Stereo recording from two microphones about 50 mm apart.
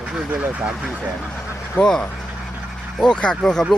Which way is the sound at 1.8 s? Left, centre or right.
Centre.